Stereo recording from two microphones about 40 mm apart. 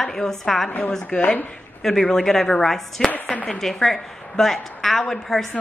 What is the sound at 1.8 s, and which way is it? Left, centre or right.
A woman's voice, centre.